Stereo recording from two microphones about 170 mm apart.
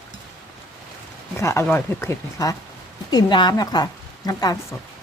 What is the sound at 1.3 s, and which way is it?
A woman's voice, 15° left (ahead or behind).